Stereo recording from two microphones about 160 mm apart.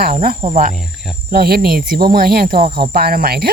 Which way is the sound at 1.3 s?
75° right (ahead or behind).